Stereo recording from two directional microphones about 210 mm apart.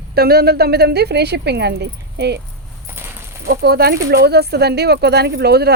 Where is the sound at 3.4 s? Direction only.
50° right (ahead or behind).